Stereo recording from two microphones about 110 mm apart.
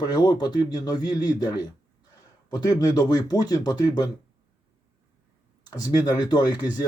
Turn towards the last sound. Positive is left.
turn(degrees=40)  # may be behind; listen again after turning